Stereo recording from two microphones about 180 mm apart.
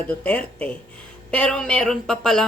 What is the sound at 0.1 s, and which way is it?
Speech, 5° left (ahead or behind).